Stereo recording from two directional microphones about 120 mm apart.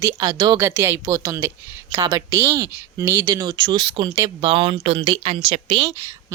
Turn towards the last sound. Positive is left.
turn(degrees=-40)  # may be behind; listen again after turning